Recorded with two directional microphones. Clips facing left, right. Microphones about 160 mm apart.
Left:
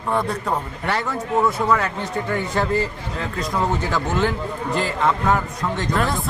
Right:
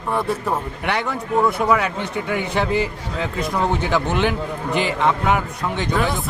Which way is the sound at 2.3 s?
75° right (ahead or behind).